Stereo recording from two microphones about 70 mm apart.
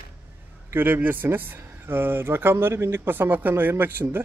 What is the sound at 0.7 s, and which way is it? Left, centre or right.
Speech, right.